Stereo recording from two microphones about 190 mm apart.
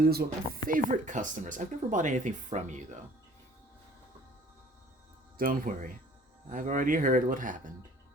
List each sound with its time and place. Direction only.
0.0 s speech: 50° right (ahead or behind)
5.4 s speech: 45° right (ahead or behind)